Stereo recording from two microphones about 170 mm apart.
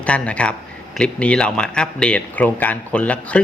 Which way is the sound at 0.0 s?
5° left (ahead or behind).